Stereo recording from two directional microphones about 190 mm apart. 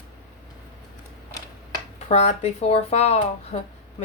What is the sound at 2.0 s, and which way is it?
Speech, 35° left (ahead or behind).